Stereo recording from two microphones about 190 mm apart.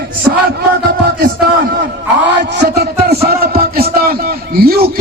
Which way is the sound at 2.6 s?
55° right (ahead or behind).